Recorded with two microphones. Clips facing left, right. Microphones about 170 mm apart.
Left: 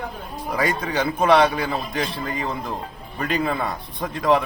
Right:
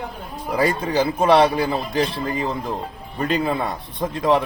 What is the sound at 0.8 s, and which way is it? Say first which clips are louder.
A man's voice: right 2 dB; 30° right (ahead or behind).